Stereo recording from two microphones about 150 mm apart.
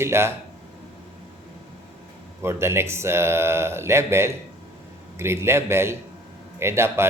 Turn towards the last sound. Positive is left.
turn(degrees=-15)  # may be behind; listen again after turning